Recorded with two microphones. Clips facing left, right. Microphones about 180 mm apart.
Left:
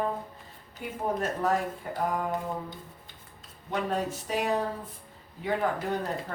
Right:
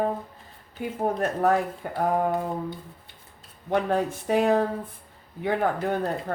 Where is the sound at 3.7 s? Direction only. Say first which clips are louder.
Right 6 dB; 55° right (ahead or behind).